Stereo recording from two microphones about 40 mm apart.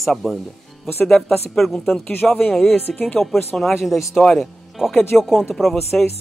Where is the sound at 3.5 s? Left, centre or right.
Left.